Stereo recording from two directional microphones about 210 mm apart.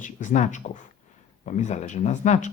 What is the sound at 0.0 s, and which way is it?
Speech, 35° left (ahead or behind).